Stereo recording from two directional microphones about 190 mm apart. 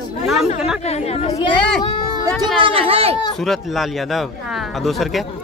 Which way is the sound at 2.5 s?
30° right (ahead or behind).